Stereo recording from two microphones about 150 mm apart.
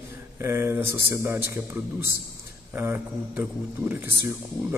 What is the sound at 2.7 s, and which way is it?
Speech, 15° right (ahead or behind).